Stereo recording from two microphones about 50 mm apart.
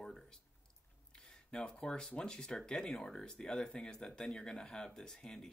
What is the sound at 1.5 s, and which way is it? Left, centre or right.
Speech, centre.